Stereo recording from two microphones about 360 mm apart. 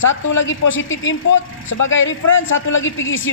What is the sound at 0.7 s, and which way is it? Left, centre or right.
A man's voice, left.